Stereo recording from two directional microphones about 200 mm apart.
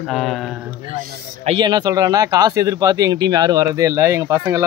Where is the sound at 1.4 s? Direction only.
25° right (ahead or behind).